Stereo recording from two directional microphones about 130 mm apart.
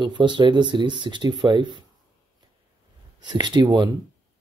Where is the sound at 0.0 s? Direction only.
35° right (ahead or behind).